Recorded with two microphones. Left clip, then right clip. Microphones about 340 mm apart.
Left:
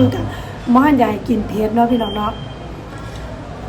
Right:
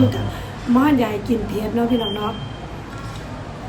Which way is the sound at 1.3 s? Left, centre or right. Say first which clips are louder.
Left 2 dB; centre.